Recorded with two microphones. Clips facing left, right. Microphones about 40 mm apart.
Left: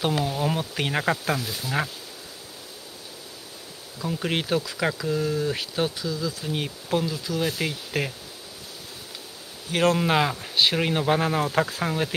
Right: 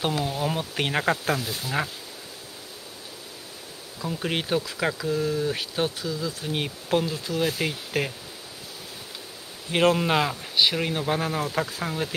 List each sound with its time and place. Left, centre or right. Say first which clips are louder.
0.2 s speech: left 1 dB; centre
0.7 s speech: even; centre
1.3 s speech: even; centre
4.0 s speech: left 1 dB; centre
5.9 s speech: left 1 dB; centre
7.3 s speech: right 2 dB; centre
9.7 s speech: right 1 dB; right
9.9 s speech: left 1 dB; centre
10.8 s speech: left 3 dB; centre